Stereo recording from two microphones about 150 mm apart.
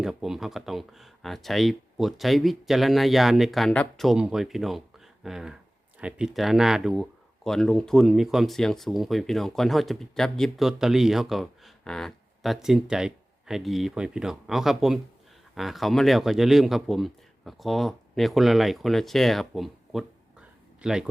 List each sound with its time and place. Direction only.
0.0 s speech: centre (ahead or behind)